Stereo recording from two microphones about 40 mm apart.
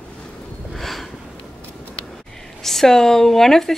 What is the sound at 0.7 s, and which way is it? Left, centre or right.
Sniff, centre.